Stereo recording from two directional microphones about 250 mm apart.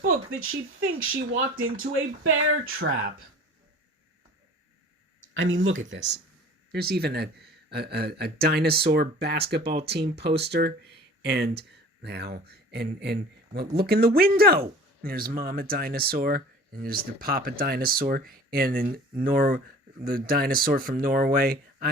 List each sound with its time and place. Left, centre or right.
0.3 s speech: right
5.3 s speech: right